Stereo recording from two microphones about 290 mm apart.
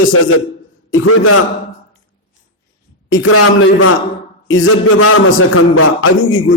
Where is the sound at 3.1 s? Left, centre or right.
Left.